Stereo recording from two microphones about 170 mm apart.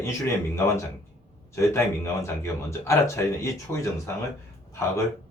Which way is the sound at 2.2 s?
15° left (ahead or behind).